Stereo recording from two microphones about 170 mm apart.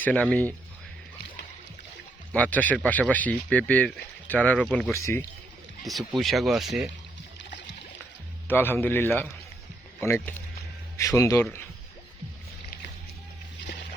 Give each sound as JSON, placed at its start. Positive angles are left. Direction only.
{"t": 0.0, "sound": "speech", "side_deg": 5}
{"t": 2.3, "sound": "speech", "side_deg": 10}
{"t": 4.9, "sound": "speech", "side_deg": 15}
{"t": 5.8, "sound": "speech", "side_deg": 0}
{"t": 8.4, "sound": "speech", "side_deg": 10}